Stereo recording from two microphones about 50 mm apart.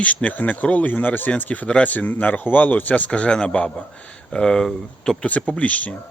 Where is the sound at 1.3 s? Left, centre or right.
Left.